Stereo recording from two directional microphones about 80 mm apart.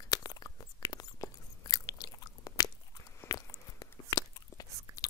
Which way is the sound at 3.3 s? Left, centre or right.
Left.